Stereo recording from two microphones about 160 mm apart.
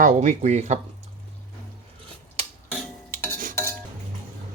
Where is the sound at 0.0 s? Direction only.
50° right (ahead or behind).